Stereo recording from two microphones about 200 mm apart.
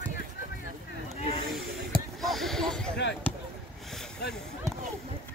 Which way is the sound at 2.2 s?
Centre (ahead or behind).